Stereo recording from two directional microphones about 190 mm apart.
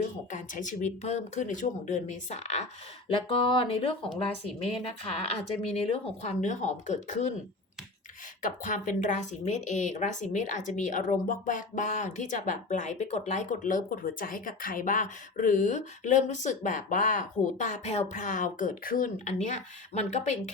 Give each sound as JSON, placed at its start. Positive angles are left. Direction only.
{"t": 0.3, "sound": "a woman's voice", "side_deg": 40}
{"t": 3.1, "sound": "speech", "side_deg": 25}
{"t": 5.6, "sound": "a woman's voice", "side_deg": 30}
{"t": 8.4, "sound": "a woman's voice", "side_deg": 40}